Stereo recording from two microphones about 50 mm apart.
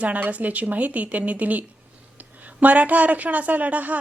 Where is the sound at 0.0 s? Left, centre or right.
Right.